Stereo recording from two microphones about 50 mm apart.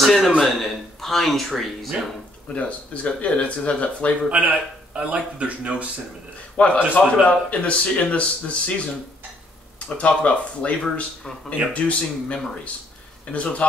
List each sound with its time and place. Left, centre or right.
0.0 s a man's voice: centre
2.5 s speech: left
4.3 s speech: right
6.5 s a man's voice: left
9.8 s speech: left